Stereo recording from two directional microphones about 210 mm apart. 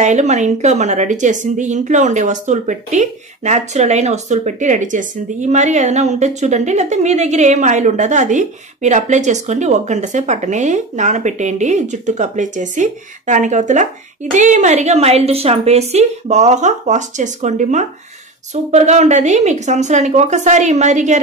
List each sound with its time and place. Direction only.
0.0 s a woman's voice: 35° right (ahead or behind)